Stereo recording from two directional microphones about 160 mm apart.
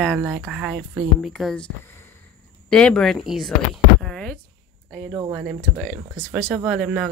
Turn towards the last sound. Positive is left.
turn(degrees=-5)  # may be behind; listen again after turning